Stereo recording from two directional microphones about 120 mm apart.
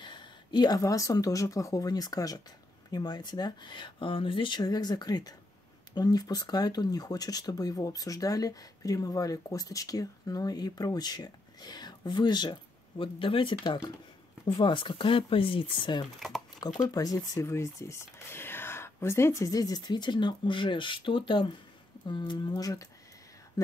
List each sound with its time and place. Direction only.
0.0 s speech: 40° left (ahead or behind)
13.0 s speech: 45° left (ahead or behind)
16.2 s speech: centre (ahead or behind)
16.5 s speech: 35° left (ahead or behind)